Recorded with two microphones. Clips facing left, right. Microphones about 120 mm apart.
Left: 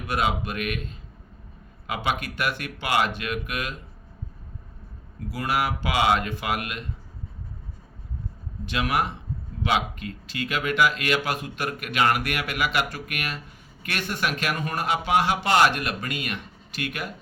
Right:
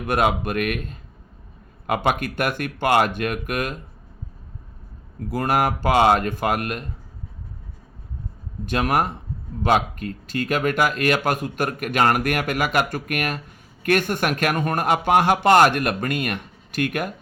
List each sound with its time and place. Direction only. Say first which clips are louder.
0.1 s speech: right 5 dB; 55° right (ahead or behind)
5.3 s speech: right 5 dB; 50° right (ahead or behind)
8.6 s speech: right 4 dB; 45° right (ahead or behind)